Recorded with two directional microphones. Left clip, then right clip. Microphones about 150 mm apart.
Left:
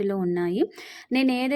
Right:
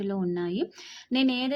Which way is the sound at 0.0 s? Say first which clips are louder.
Left 5 dB; 30° left (ahead or behind).